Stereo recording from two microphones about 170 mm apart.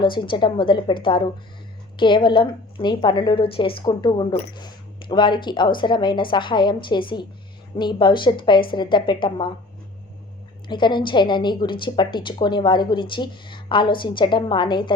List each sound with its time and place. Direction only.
0.0 s a woman's voice: 30° left (ahead or behind)
10.7 s a woman's voice: 25° left (ahead or behind)